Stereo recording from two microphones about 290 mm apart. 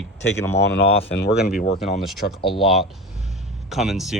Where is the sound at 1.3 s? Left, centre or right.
Centre.